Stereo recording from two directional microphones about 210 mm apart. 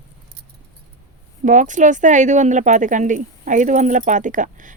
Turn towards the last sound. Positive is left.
turn(degrees=-35)  # may be behind; listen again after turning